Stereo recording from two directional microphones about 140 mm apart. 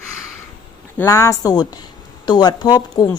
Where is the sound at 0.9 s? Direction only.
20° left (ahead or behind).